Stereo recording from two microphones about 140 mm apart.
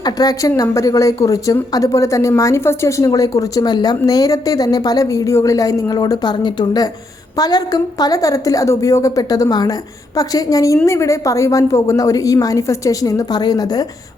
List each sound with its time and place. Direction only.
0.0 s a woman's voice: 25° left (ahead or behind)